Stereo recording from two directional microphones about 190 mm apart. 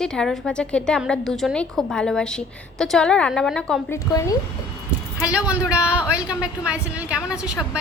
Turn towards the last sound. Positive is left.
turn(degrees=-5)  # may be behind; listen again after turning